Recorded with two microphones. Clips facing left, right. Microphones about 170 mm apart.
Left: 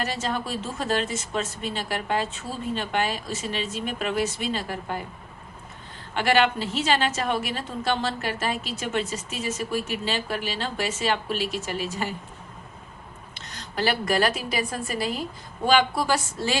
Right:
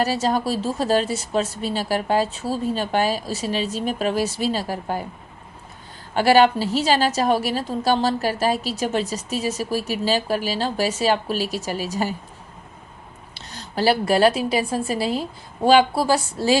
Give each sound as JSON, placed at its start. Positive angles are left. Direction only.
{"t": 0.0, "sound": "a woman's voice", "side_deg": -35}
{"t": 6.1, "sound": "a woman's voice", "side_deg": -35}
{"t": 13.3, "sound": "a woman's voice", "side_deg": -35}